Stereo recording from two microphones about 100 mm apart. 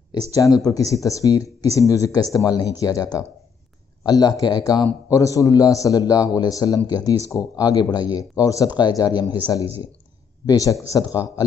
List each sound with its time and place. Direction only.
0.3 s speech: 35° left (ahead or behind)
5.1 s speech: 35° left (ahead or behind)